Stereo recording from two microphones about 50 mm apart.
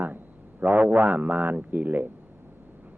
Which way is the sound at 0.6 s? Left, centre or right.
Right.